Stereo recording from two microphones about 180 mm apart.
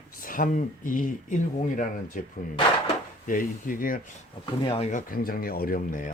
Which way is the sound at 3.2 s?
50° left (ahead or behind).